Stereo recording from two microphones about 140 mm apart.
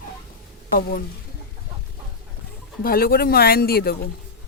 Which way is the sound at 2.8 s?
90° left.